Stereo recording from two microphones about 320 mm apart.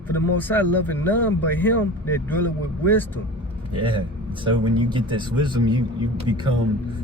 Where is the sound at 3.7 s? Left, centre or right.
Centre.